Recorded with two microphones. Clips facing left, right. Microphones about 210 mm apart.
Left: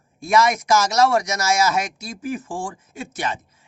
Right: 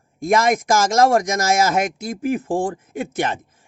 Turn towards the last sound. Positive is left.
turn(degrees=-55)  # may be behind; listen again after turning